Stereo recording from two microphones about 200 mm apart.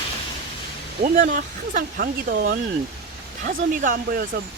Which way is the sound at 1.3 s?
40° right (ahead or behind).